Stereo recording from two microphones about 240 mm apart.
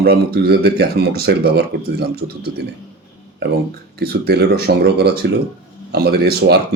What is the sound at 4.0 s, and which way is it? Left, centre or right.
A man's voice, right.